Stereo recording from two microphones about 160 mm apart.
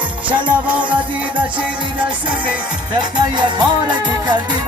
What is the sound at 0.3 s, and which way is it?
Music, 10° right (ahead or behind).